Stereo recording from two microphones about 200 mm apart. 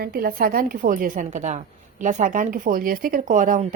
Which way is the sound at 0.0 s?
50° right (ahead or behind).